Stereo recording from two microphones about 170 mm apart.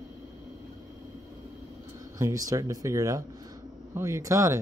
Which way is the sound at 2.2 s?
20° right (ahead or behind).